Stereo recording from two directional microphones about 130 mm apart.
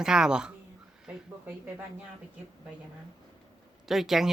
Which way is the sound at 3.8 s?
Centre (ahead or behind).